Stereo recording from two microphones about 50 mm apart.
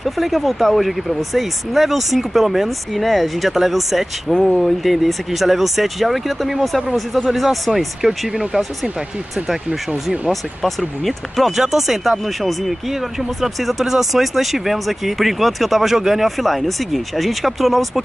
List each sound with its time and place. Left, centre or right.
0.0 s speech: centre
4.3 s speech: centre
4.6 s speech: centre
10.2 s speech: centre